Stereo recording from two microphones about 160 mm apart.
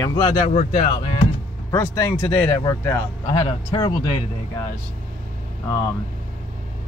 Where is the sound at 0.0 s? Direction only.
25° left (ahead or behind).